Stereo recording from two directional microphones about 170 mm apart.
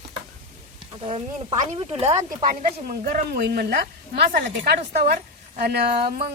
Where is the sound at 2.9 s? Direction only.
55° right (ahead or behind).